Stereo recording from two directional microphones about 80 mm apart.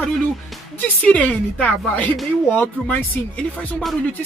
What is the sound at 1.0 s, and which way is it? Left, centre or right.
Speech, centre.